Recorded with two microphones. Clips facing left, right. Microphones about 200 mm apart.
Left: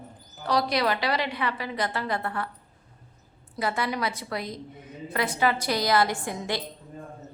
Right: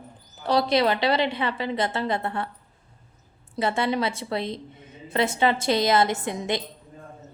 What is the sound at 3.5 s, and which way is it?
A woman's voice, 25° right (ahead or behind).